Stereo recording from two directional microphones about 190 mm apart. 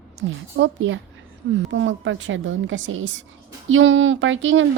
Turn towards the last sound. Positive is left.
turn(degrees=-90)